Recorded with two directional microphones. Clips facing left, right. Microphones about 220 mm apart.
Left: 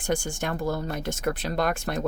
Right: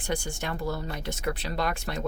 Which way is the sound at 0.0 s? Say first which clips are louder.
Left 4 dB; 45° left (ahead or behind).